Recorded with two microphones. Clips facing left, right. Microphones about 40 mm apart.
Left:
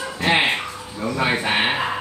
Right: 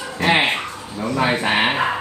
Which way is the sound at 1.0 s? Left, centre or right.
Right.